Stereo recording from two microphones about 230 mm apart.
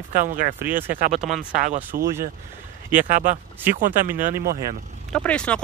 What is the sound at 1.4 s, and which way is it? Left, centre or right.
Speech, right.